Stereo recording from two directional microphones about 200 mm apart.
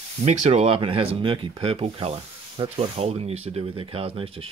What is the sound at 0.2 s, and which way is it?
Speech, 35° right (ahead or behind).